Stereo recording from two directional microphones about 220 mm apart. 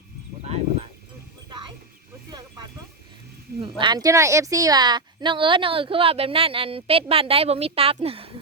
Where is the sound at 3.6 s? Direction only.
20° right (ahead or behind).